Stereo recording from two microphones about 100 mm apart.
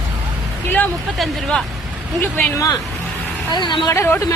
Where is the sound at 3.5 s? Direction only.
50° left (ahead or behind).